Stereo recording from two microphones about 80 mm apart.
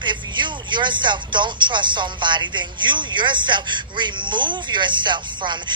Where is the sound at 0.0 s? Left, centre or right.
Right.